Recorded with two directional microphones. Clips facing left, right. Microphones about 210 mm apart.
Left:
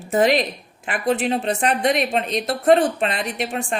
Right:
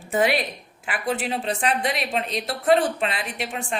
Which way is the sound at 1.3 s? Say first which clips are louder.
Left 4 dB; 45° left (ahead or behind).